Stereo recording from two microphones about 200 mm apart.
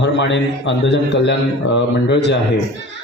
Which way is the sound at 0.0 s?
65° left (ahead or behind).